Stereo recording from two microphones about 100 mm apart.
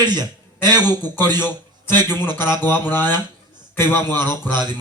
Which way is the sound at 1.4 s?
20° left (ahead or behind).